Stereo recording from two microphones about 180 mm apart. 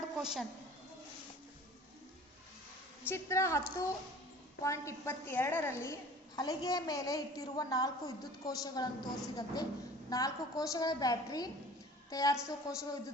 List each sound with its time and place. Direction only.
0.2 s a woman's voice: centre (ahead or behind)
3.1 s a woman's voice: 15° left (ahead or behind)